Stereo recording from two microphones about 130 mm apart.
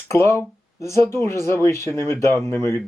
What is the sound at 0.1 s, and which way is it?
Speech, 20° left (ahead or behind).